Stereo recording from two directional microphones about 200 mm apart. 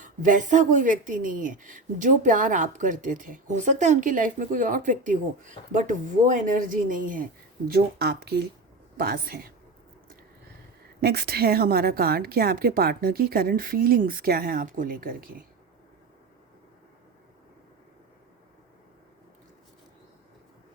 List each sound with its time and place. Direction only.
0.0 s speech: 40° right (ahead or behind)
7.7 s a woman's voice: 55° right (ahead or behind)
11.0 s a woman's voice: 50° right (ahead or behind)